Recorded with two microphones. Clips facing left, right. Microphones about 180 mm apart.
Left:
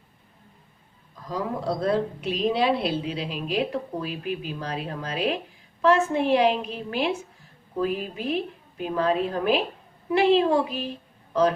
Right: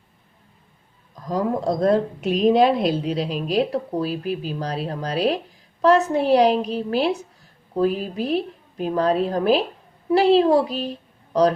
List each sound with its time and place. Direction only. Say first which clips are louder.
1.2 s a woman's voice: right 6 dB; 45° right (ahead or behind)